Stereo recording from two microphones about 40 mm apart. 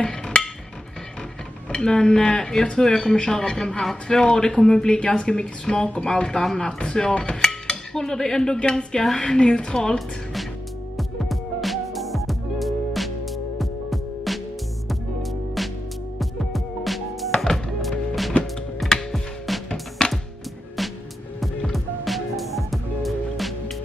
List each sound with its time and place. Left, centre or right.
0.0 s music: left
1.7 s a woman's voice: centre
11.0 s music: centre
20.0 s music: centre
21.7 s music: centre